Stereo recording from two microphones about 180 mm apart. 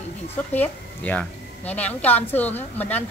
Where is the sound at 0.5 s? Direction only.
10° left (ahead or behind).